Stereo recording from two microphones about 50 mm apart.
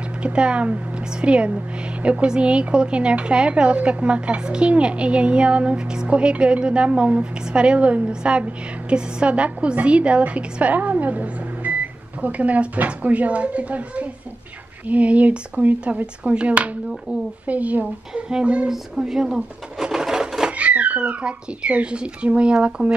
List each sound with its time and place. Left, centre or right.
0.2 s a woman's voice: right
18.7 s sewing machine: centre
20.5 s a woman's voice: right